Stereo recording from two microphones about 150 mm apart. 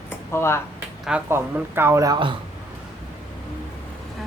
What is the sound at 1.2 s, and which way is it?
Speech, 15° right (ahead or behind).